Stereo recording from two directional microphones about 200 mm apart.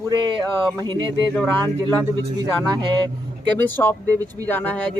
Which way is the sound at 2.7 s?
25° right (ahead or behind).